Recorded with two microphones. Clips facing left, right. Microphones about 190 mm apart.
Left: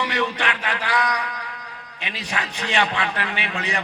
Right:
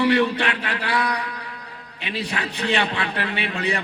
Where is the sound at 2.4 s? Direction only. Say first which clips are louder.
Even; 35° right (ahead or behind).